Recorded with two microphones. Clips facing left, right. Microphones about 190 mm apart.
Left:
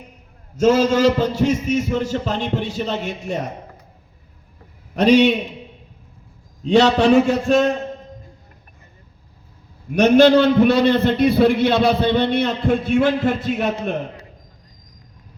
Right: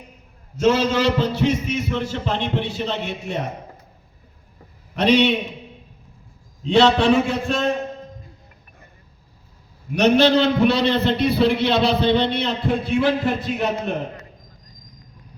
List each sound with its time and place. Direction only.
0.5 s a man's voice: 45° left (ahead or behind)
4.9 s a man's voice: 45° left (ahead or behind)
6.7 s a man's voice: 45° left (ahead or behind)
9.9 s a man's voice: 50° left (ahead or behind)